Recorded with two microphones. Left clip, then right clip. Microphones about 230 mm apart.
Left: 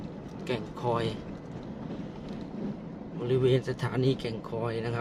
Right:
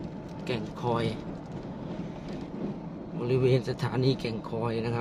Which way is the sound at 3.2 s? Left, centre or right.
Centre.